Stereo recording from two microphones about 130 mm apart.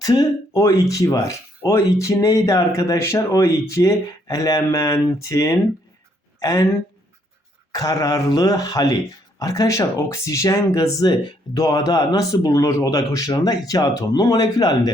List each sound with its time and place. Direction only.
0.0 s speech: 30° left (ahead or behind)
7.7 s speech: 30° left (ahead or behind)